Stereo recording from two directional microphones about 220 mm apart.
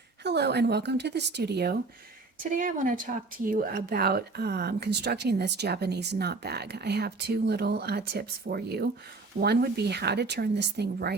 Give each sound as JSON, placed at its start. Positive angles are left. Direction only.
{"t": 0.2, "sound": "speech", "side_deg": -50}
{"t": 2.4, "sound": "speech", "side_deg": -35}